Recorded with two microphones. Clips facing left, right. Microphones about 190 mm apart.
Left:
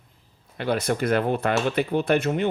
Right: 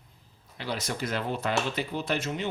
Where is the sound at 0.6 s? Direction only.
55° left (ahead or behind).